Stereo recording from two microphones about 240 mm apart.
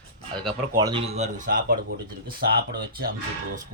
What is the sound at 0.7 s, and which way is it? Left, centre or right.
Speech, centre.